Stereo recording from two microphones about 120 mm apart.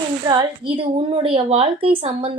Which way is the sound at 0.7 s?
50° right (ahead or behind).